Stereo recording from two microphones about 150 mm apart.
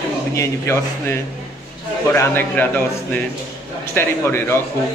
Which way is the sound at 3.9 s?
15° left (ahead or behind).